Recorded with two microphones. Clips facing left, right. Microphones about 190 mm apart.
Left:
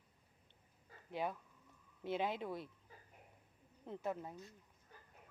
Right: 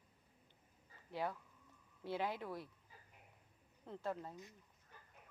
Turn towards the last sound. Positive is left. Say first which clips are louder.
# left 2 dB
turn(degrees=15)  # may be behind; listen again after turning